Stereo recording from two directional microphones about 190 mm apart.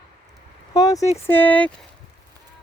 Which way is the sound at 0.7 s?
20° left (ahead or behind).